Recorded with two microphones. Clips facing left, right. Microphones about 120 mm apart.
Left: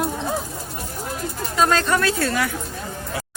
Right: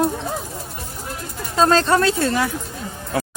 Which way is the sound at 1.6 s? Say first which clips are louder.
Right 3 dB; 30° right (ahead or behind).